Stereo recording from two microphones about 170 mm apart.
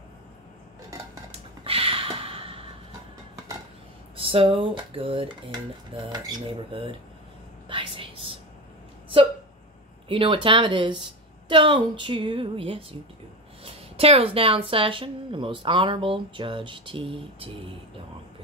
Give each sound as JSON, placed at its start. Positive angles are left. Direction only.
{"t": 1.3, "sound": "a sound", "side_deg": -35}
{"t": 4.2, "sound": "a woman's voice", "side_deg": -35}
{"t": 7.6, "sound": "whispering", "side_deg": -30}
{"t": 10.0, "sound": "a woman's voice", "side_deg": -30}